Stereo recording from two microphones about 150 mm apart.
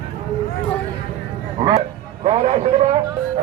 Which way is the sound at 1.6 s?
30° right (ahead or behind).